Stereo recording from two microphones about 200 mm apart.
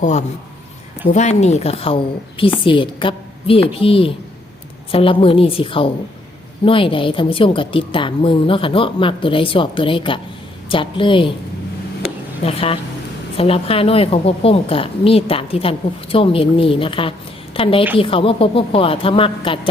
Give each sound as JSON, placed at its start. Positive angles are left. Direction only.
{"t": 0.0, "sound": "a man's voice", "side_deg": 35}
{"t": 12.0, "sound": "a sound", "side_deg": 30}
{"t": 13.3, "sound": "a woman's voice", "side_deg": 30}